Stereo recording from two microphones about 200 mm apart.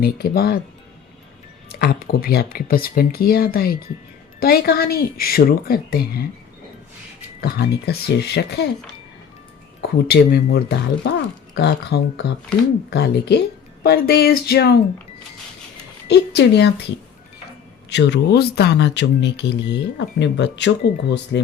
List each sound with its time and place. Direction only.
0.0 s speech: 50° left (ahead or behind)
1.7 s speech: 50° left (ahead or behind)
7.4 s speech: 55° left (ahead or behind)
10.1 s speech: 55° left (ahead or behind)
16.0 s speech: 55° left (ahead or behind)
17.8 s speech: 60° left (ahead or behind)